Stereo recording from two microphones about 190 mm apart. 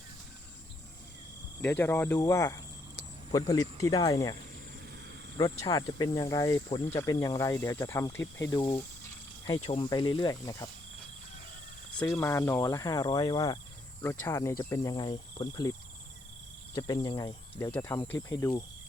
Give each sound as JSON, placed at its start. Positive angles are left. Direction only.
{"t": 1.6, "sound": "speech", "side_deg": 10}
{"t": 5.4, "sound": "speech", "side_deg": 25}
{"t": 11.9, "sound": "speech", "side_deg": 15}
{"t": 16.7, "sound": "speech", "side_deg": 20}